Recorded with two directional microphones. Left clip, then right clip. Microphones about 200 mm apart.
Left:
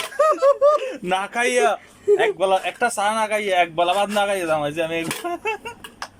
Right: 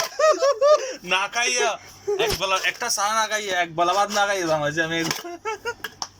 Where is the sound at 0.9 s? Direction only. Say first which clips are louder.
Even; 25° left (ahead or behind).